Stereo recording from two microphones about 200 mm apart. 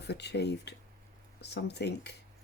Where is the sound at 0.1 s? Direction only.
55° left (ahead or behind).